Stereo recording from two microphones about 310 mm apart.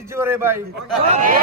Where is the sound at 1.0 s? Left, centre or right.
Right.